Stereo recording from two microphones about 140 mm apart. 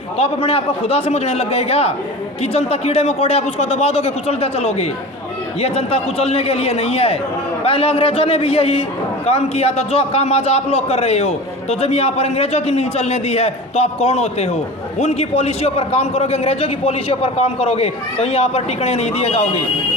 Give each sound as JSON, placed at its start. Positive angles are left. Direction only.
{"t": 0.2, "sound": "a man's voice", "side_deg": 45}